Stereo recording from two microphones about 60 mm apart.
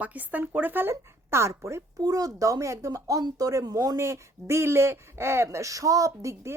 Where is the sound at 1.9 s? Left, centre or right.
Right.